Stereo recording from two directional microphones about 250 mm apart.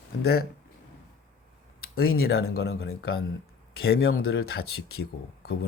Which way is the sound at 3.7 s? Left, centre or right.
Left.